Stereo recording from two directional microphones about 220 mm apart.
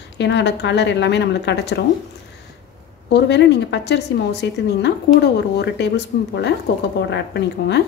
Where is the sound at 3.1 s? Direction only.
50° left (ahead or behind).